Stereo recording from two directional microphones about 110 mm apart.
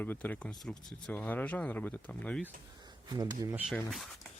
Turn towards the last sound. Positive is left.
turn(degrees=0)  # may be behind; listen again after turning